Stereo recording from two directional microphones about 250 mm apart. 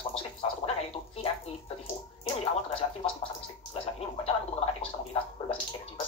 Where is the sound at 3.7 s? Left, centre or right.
Left.